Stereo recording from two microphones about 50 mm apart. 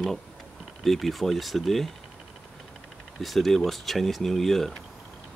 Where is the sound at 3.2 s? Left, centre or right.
Centre.